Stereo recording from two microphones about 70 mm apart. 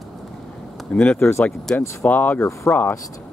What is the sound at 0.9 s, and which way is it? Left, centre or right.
Speech, centre.